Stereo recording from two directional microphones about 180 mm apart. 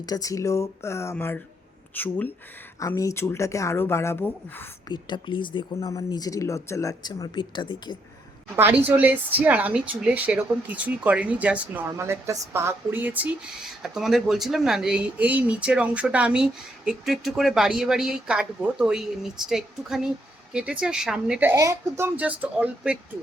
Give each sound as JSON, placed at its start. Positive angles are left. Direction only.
{"t": 0.0, "sound": "speech", "side_deg": 20}
{"t": 4.9, "sound": "speech", "side_deg": 25}
{"t": 8.5, "sound": "speech", "side_deg": -10}
{"t": 21.5, "sound": "speech", "side_deg": -15}